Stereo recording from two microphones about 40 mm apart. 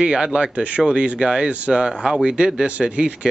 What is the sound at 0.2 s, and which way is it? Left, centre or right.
Speech, centre.